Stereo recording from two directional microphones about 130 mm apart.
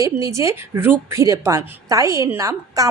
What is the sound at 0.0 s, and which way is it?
A woman's voice, 25° right (ahead or behind).